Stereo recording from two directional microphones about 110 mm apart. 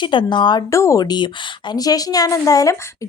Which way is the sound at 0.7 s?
30° left (ahead or behind).